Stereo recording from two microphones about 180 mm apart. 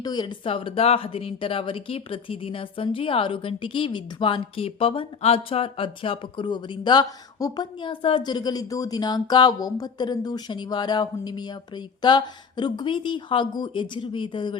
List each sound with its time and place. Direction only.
0.0 s speech: 25° left (ahead or behind)